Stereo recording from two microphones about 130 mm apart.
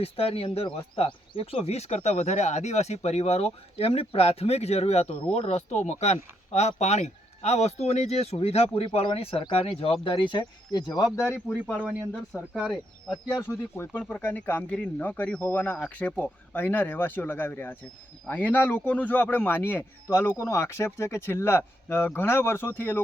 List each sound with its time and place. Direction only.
0.0 s speech: 50° left (ahead or behind); by 11.1 s 30° left (ahead or behind)
11.6 s speech: 10° left (ahead or behind)
13.4 s speech: 20° left (ahead or behind)